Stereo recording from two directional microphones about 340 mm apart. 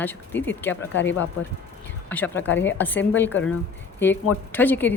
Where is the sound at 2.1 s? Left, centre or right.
Centre.